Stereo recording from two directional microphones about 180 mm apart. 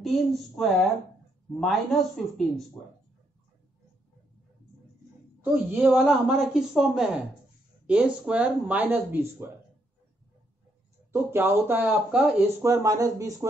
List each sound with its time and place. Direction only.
0.0 s speech: centre (ahead or behind)
5.4 s speech: 10° right (ahead or behind)
11.1 s speech: 15° right (ahead or behind)